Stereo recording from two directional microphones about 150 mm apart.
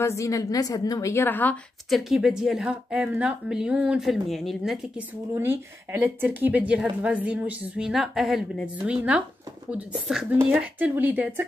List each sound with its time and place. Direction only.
0.0 s a woman's voice: 20° left (ahead or behind)
1.9 s speech: centre (ahead or behind)
5.3 s a woman's voice: 15° right (ahead or behind)